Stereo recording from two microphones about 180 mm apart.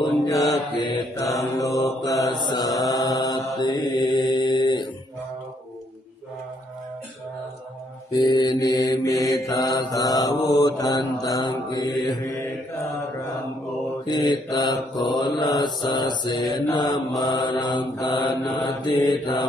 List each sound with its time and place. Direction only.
0.8 s mantra: 15° left (ahead or behind)
8.1 s mantra: 25° left (ahead or behind)
14.0 s mantra: 20° left (ahead or behind)